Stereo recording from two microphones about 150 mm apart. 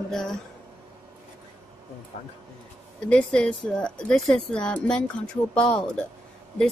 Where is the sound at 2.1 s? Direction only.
45° left (ahead or behind).